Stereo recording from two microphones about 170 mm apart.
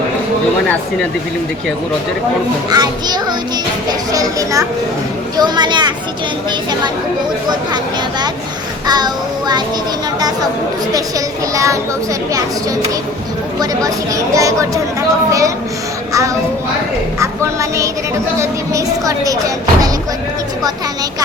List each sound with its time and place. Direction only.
2.6 s a woman's voice: 25° right (ahead or behind)
8.9 s a woman's voice: 25° right (ahead or behind)
11.5 s a woman's voice: 20° right (ahead or behind)
13.6 s a woman's voice: 20° right (ahead or behind)